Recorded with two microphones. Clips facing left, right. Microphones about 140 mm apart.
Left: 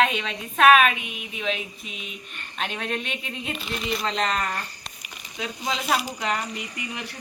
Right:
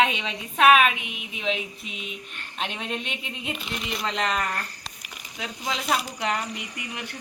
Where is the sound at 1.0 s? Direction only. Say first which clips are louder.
Left 1 dB; 80° right.